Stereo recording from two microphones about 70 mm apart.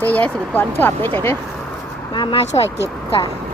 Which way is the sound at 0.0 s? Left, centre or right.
Left.